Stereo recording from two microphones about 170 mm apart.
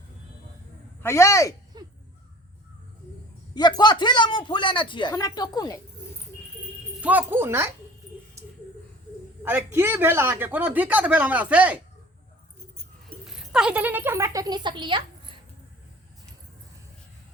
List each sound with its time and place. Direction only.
1.0 s speech: 15° left (ahead or behind)
1.7 s a sound: 25° right (ahead or behind)
3.5 s a man's voice: 25° left (ahead or behind)
7.0 s a man's voice: 10° right (ahead or behind)
9.4 s a man's voice: 10° right (ahead or behind)
13.2 s speech: 5° right (ahead or behind); by 15.4 s 30° right (ahead or behind)